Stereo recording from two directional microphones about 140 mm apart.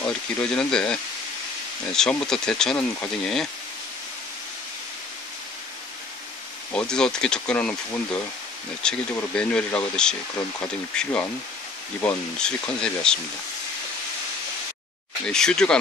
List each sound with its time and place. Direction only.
0.0 s speech: 5° left (ahead or behind)
2.0 s speech: 5° left (ahead or behind)
6.7 s speech: 5° left (ahead or behind)
15.2 s speech: 5° left (ahead or behind)